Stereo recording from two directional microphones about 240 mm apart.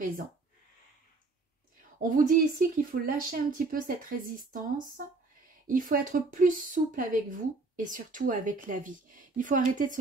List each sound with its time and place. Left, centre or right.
2.0 s speech: right